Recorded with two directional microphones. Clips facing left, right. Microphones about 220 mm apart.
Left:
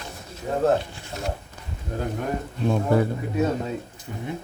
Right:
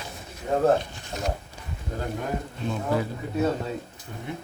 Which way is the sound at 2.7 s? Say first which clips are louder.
Left 6 dB; 55° left (ahead or behind).